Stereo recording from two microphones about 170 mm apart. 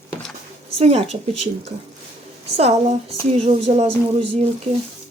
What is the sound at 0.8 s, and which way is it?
Speech, 35° right (ahead or behind).